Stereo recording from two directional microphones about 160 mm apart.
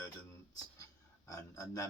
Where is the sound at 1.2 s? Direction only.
20° left (ahead or behind).